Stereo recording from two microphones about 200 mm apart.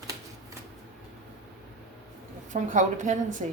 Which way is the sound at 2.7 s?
40° right (ahead or behind).